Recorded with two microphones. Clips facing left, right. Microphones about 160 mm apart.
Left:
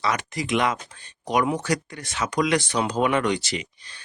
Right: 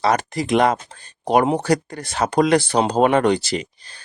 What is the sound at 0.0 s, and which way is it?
Speech, 35° right (ahead or behind).